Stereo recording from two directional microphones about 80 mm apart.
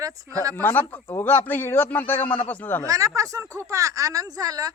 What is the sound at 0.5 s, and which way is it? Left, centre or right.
A man's voice, left.